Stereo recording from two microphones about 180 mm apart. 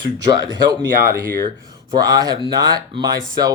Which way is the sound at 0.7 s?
20° right (ahead or behind).